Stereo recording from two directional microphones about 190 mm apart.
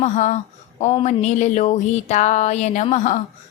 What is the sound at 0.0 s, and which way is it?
Speech, 40° left (ahead or behind).